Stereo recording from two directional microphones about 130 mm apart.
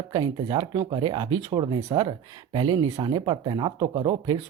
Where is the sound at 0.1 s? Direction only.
35° right (ahead or behind).